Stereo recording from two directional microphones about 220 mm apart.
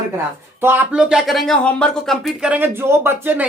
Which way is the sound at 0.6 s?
10° right (ahead or behind).